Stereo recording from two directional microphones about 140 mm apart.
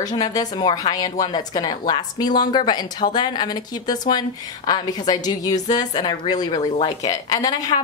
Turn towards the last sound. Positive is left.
turn(degrees=25)  # may be behind; listen again after turning